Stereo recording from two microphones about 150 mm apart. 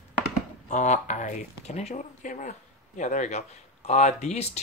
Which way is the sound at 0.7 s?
55° left (ahead or behind).